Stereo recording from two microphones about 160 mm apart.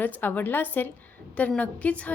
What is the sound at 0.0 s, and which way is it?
A woman's voice, 10° left (ahead or behind).